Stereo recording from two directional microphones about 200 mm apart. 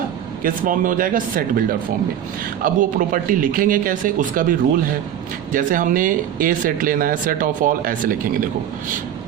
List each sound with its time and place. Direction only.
0.4 s speech: 45° right (ahead or behind)